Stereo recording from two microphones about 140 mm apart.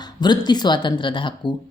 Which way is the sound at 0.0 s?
30° left (ahead or behind).